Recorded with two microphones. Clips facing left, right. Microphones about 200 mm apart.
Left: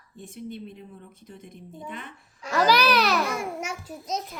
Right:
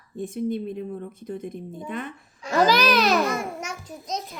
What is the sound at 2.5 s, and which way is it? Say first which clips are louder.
Child singing: right 2 dB; 20° right (ahead or behind).